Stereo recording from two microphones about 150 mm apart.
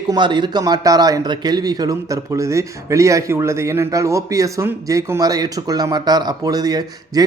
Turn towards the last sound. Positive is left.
turn(degrees=-25)  # may be behind; listen again after turning